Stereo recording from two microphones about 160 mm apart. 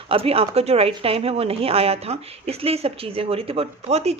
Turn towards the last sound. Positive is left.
turn(degrees=-40)  # may be behind; listen again after turning